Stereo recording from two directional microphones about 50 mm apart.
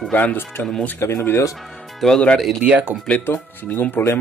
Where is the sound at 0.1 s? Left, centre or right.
Left.